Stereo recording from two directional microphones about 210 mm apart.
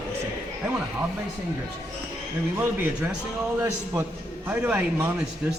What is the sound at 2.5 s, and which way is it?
A man's voice, 10° right (ahead or behind).